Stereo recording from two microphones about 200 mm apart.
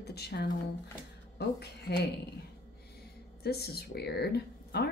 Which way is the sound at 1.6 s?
55° left (ahead or behind).